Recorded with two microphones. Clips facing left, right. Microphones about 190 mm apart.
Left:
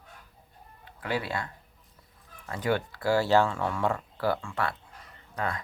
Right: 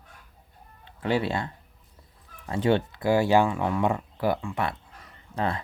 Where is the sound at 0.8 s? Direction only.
25° right (ahead or behind).